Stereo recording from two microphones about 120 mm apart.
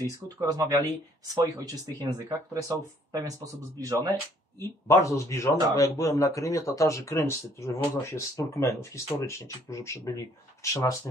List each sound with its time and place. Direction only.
0.0 s speech: 30° right (ahead or behind)
4.6 s speech: 25° left (ahead or behind)